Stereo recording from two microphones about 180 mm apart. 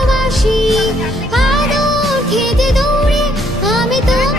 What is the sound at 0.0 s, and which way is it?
Music, centre (ahead or behind).